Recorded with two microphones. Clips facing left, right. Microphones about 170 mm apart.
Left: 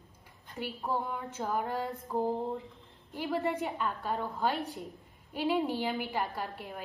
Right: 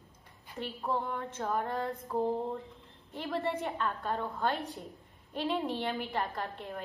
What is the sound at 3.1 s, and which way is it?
A woman's voice, 10° left (ahead or behind).